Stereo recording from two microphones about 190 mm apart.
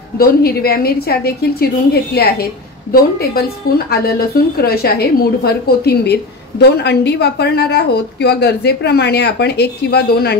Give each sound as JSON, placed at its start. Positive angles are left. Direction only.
{"t": 0.2, "sound": "a woman's voice", "side_deg": 55}